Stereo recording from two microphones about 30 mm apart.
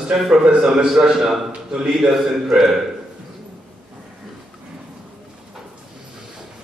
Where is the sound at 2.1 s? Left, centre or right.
Centre.